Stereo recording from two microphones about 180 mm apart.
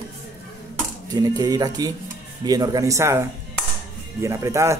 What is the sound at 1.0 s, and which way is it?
Speech, 20° right (ahead or behind).